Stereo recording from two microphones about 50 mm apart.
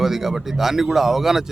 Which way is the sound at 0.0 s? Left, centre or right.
Centre.